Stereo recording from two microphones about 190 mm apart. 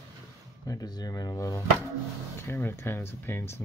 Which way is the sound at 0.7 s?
20° left (ahead or behind).